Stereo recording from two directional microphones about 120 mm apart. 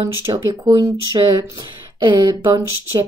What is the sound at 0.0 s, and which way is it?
Speech, 35° right (ahead or behind).